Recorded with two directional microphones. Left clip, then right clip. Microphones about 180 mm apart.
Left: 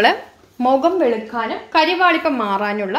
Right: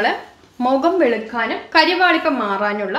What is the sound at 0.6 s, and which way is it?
A woman's voice, 15° left (ahead or behind).